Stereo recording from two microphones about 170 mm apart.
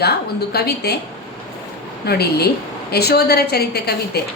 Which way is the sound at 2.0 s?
70° left (ahead or behind).